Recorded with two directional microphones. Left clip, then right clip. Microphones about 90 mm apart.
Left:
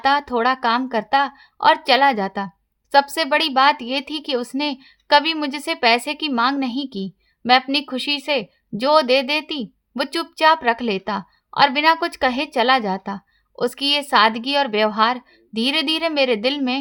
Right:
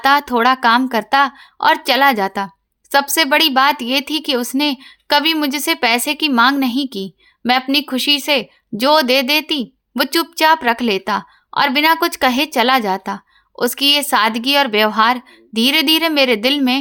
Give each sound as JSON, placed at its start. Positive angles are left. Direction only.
{"t": 0.0, "sound": "speech", "side_deg": -25}